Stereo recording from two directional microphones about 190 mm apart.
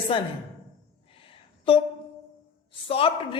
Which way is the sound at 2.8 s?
30° left (ahead or behind).